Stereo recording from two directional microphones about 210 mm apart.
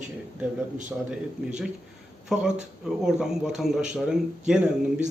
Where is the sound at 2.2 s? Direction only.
Centre (ahead or behind).